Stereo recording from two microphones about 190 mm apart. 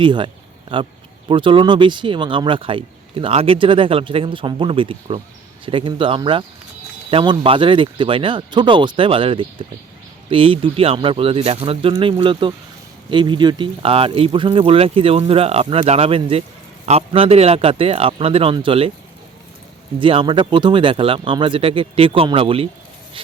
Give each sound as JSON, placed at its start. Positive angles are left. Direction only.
{"t": 0.0, "sound": "speech", "side_deg": -25}
{"t": 20.0, "sound": "speech", "side_deg": -25}